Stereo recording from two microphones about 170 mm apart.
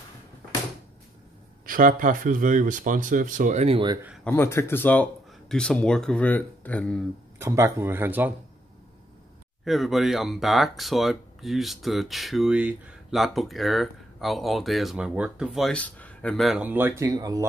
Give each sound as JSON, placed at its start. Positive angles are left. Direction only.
{"t": 1.7, "sound": "speech", "side_deg": -55}
{"t": 4.2, "sound": "speech", "side_deg": 10}
{"t": 7.3, "sound": "speech", "side_deg": -15}
{"t": 9.7, "sound": "speech", "side_deg": 0}